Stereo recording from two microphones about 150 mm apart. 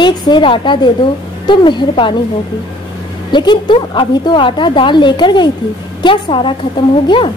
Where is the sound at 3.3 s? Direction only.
30° left (ahead or behind).